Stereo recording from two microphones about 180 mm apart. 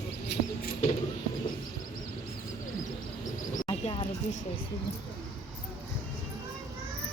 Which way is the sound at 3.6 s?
30° left (ahead or behind).